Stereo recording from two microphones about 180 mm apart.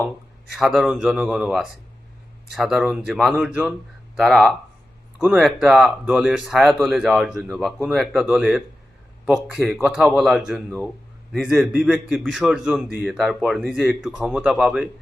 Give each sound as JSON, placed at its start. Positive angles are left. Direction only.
{"t": 0.5, "sound": "speech", "side_deg": 0}